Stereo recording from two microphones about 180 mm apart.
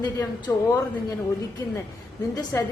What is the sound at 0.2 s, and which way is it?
Speech, 15° left (ahead or behind).